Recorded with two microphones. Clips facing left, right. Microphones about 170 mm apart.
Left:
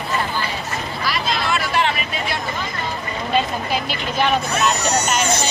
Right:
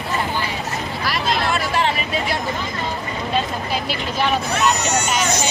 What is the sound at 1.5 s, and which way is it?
Vehicle, 40° right (ahead or behind).